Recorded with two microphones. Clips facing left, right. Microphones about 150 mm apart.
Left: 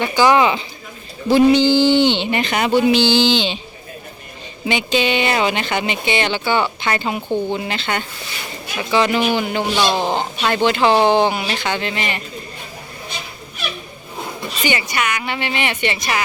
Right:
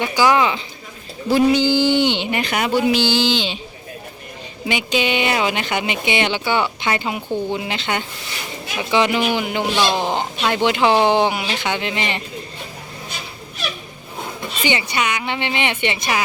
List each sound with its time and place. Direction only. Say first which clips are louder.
0.0 s speech: left 2 dB; 10° right (ahead or behind)
0.3 s speech: left 3 dB; 5° left (ahead or behind)
4.7 s speech: left 2 dB; 10° right (ahead or behind)
14.6 s a woman's voice: even; 20° right (ahead or behind)